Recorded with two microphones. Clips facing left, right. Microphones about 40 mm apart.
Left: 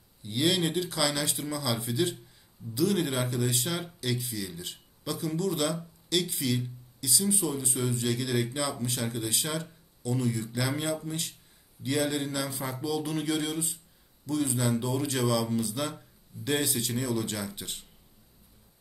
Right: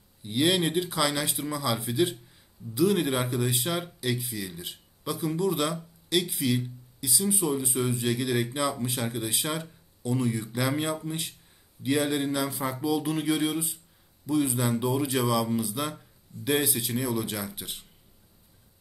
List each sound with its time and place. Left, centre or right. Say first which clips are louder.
0.2 s a man's voice: right 2 dB; centre